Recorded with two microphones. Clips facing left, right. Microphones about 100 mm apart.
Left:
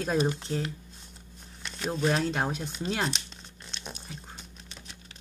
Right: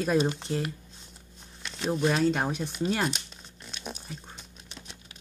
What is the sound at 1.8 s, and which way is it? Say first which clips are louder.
Speech: right 2 dB; 10° right (ahead or behind).